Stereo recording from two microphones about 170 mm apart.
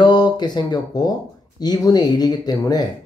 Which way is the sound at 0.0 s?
25° left (ahead or behind).